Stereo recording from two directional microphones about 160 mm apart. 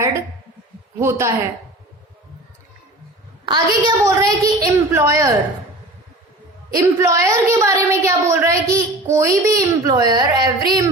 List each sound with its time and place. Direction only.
0.9 s a woman's voice: 15° right (ahead or behind)
3.4 s a woman's voice: 25° right (ahead or behind)
6.7 s a woman's voice: 20° right (ahead or behind)